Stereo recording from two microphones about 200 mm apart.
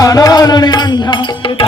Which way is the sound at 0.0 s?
20° left (ahead or behind).